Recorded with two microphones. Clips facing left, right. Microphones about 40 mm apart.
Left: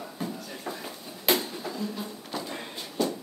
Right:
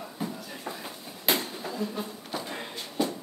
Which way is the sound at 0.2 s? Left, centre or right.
Centre.